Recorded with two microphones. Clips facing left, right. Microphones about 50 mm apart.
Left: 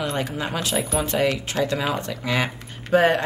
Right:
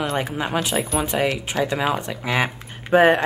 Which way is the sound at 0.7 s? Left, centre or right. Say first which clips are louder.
Right 1 dB; centre.